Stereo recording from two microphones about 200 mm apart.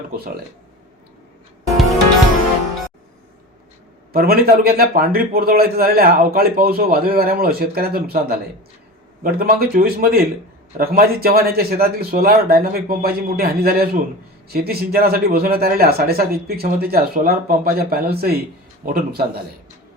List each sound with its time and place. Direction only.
4.1 s a man's voice: 50° right (ahead or behind)